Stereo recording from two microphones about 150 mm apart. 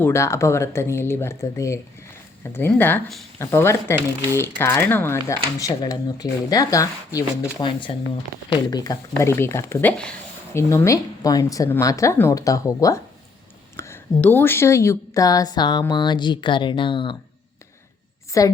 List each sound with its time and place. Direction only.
0.0 s speech: 15° left (ahead or behind)
7.6 s speech: 35° left (ahead or behind)
18.3 s a woman's voice: 20° left (ahead or behind)